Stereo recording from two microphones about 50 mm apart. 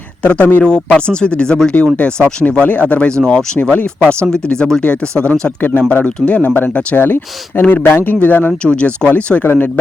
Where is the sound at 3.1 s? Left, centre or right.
Centre.